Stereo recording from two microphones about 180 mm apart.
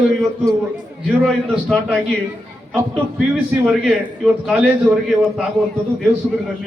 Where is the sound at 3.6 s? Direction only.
5° right (ahead or behind).